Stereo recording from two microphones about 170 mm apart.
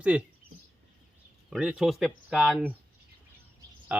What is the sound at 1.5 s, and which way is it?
Speech, 5° right (ahead or behind).